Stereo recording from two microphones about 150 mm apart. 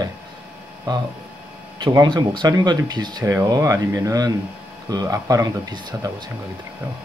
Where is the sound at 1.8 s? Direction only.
30° right (ahead or behind).